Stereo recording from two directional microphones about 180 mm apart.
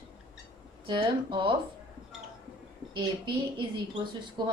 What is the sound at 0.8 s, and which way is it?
Speech, 25° right (ahead or behind).